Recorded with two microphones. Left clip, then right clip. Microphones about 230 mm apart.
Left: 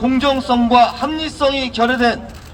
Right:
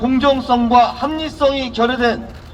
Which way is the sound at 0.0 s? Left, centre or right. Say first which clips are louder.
Right 1 dB; left.